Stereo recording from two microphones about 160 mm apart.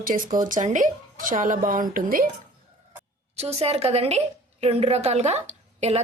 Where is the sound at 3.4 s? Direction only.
40° right (ahead or behind).